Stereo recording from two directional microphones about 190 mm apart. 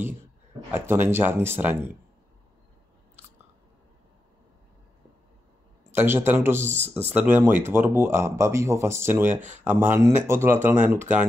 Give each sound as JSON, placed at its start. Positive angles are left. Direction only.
{"t": 0.7, "sound": "speech", "side_deg": -10}
{"t": 5.9, "sound": "a man's voice", "side_deg": -10}
{"t": 6.6, "sound": "speech", "side_deg": -35}
{"t": 7.2, "sound": "speech", "side_deg": -10}